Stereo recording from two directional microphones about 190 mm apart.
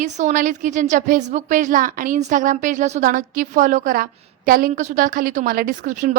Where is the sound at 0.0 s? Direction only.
40° right (ahead or behind).